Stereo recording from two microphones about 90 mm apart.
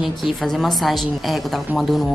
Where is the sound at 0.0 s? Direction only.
Centre (ahead or behind).